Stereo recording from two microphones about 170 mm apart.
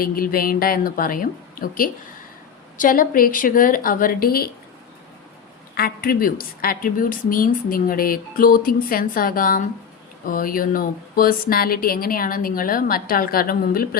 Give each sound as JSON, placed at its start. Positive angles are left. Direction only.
{"t": 0.0, "sound": "a woman's voice", "side_deg": 60}
{"t": 5.7, "sound": "a woman's voice", "side_deg": 65}